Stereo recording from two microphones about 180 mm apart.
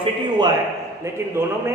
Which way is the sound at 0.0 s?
25° right (ahead or behind).